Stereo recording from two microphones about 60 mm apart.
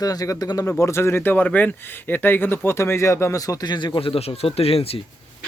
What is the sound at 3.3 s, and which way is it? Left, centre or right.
Speech, left.